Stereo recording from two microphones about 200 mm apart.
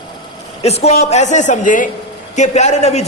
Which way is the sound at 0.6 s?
30° left (ahead or behind).